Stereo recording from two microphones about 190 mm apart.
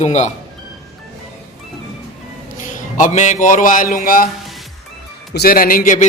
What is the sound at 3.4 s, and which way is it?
Speech, 45° left (ahead or behind).